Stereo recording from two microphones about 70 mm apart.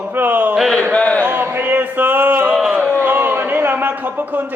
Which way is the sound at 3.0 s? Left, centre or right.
Right.